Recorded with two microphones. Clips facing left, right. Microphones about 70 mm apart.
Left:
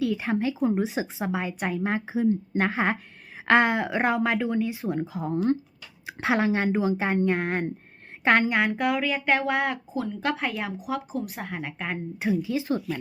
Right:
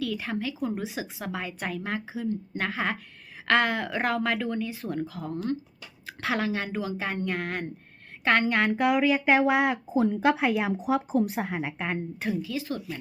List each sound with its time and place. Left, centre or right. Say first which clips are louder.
0.0 s a woman's voice: left 5 dB; left
8.7 s speech: right 3 dB; centre
9.9 s speech: right 6 dB; right
10.2 s speech: right 4 dB; centre
11.1 s speech: right 6 dB; right
11.3 s speech: right 3 dB; centre
12.2 s a woman's voice: left 7 dB; centre